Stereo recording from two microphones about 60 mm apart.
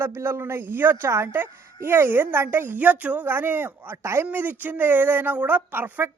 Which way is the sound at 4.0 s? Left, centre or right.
Right.